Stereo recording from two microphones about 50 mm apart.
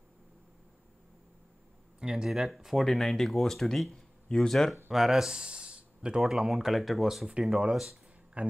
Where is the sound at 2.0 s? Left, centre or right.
Centre.